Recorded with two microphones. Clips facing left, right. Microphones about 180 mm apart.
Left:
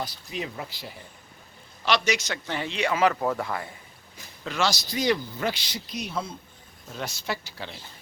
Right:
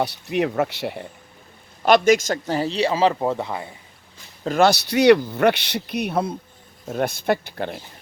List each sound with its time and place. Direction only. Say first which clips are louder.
0.0 s speech: right 11 dB; 70° right (ahead or behind)
1.8 s a man's voice: right 10 dB; 50° right (ahead or behind); by 3.8 s 20° right (ahead or behind)
4.4 s speech: right 10 dB; 55° right (ahead or behind)